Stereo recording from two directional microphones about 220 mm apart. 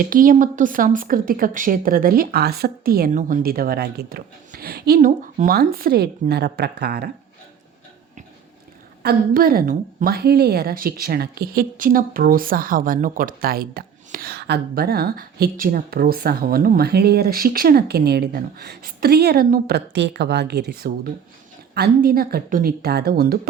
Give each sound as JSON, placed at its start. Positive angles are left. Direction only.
{"t": 0.0, "sound": "a woman's voice", "side_deg": -40}
{"t": 9.0, "sound": "a woman's voice", "side_deg": -40}